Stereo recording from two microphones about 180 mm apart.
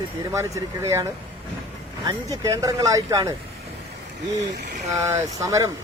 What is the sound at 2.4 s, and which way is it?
Speech, 20° right (ahead or behind).